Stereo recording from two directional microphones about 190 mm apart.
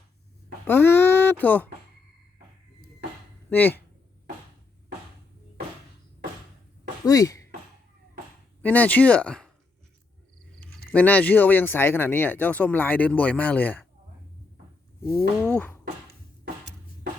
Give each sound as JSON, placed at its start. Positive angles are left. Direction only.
{"t": 0.7, "sound": "speech", "side_deg": 10}
{"t": 3.5, "sound": "speech", "side_deg": 10}
{"t": 7.0, "sound": "speech", "side_deg": 20}
{"t": 8.6, "sound": "speech", "side_deg": 10}
{"t": 10.9, "sound": "speech", "side_deg": 10}
{"t": 15.5, "sound": "speech", "side_deg": 10}